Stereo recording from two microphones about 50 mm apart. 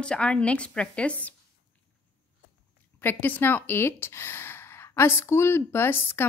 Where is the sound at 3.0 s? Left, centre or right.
Left.